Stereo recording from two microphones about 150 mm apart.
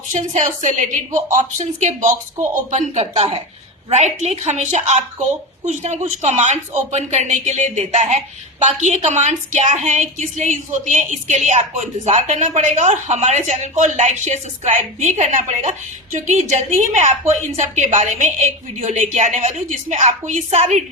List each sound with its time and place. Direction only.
0.1 s a woman's voice: 55° right (ahead or behind)